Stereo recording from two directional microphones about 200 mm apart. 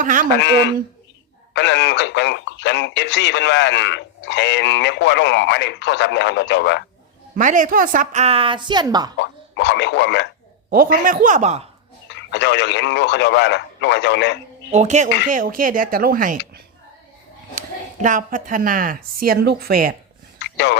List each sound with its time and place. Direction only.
0.0 s speech: 40° right (ahead or behind)
0.3 s speech: 60° left (ahead or behind)
7.3 s a woman's voice: 40° right (ahead or behind); by 9.1 s 20° right (ahead or behind)
9.1 s speech: 60° left (ahead or behind)
10.7 s a woman's voice: 45° right (ahead or behind)
12.3 s speech: 60° left (ahead or behind)
14.7 s a woman's voice: 35° right (ahead or behind)
18.0 s a woman's voice: 40° right (ahead or behind)
20.4 s a sound: 60° left (ahead or behind)